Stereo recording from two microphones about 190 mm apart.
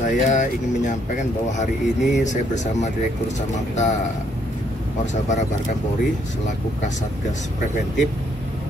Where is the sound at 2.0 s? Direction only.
Centre (ahead or behind).